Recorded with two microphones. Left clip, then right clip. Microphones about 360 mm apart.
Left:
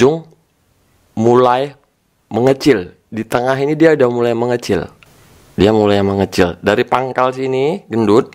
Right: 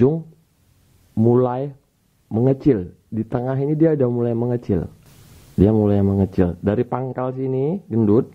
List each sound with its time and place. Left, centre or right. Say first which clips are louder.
1.1 s speech: left 7 dB; centre
1.5 s speech: left 11 dB; centre